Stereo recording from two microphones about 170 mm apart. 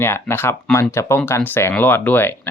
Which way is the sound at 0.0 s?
15° left (ahead or behind).